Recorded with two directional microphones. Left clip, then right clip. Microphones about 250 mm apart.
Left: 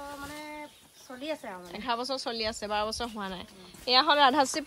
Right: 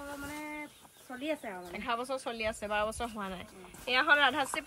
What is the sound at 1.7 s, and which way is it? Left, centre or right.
Speech, centre.